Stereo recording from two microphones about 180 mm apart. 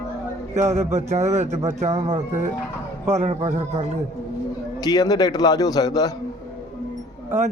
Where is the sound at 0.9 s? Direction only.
40° right (ahead or behind).